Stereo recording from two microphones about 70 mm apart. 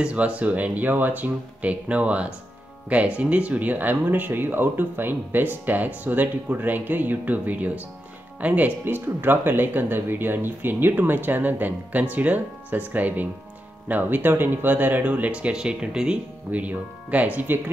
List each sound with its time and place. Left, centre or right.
0.0 s speech: centre